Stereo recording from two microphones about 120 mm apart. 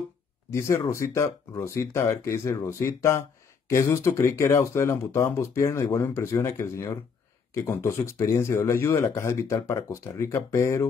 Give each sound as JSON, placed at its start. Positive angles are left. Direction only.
{"t": 0.5, "sound": "speech", "side_deg": 25}